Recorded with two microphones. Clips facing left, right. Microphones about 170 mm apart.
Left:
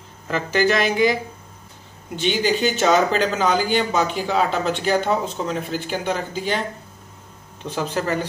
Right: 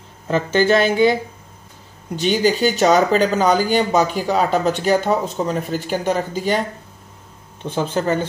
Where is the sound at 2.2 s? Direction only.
40° right (ahead or behind).